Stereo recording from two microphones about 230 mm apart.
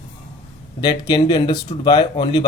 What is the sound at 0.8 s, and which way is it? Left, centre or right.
Speech, centre.